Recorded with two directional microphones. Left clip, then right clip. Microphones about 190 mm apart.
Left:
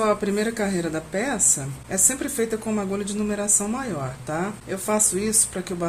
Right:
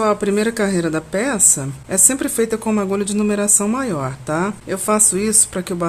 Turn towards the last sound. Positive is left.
turn(degrees=-35)  # may be behind; listen again after turning